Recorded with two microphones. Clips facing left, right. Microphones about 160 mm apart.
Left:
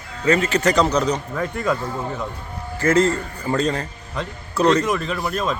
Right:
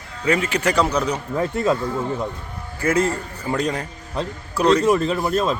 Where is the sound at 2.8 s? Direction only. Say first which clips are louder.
Left 3 dB; 10° right (ahead or behind).